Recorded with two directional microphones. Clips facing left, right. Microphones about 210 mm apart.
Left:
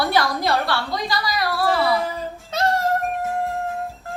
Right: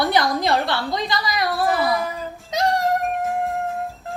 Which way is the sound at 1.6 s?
30° left (ahead or behind).